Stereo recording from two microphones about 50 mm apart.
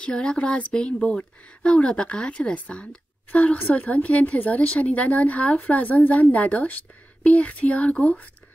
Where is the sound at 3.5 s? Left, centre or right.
Left.